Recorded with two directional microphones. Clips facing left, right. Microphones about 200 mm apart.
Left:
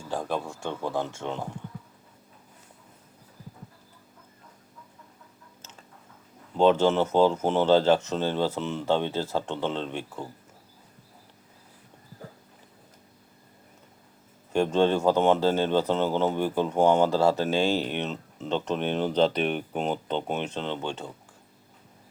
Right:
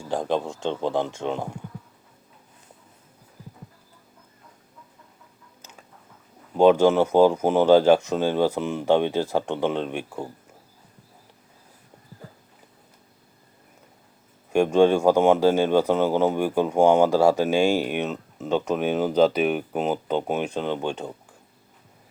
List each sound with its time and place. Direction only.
0.1 s speech: 20° right (ahead or behind)
6.6 s speech: 10° right (ahead or behind)
14.5 s speech: 15° right (ahead or behind)